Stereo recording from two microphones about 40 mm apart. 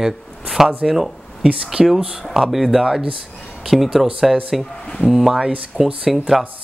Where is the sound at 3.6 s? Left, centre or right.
Centre.